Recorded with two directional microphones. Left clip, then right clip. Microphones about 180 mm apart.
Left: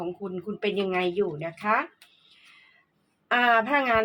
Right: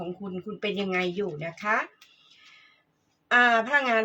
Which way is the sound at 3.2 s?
35° left (ahead or behind).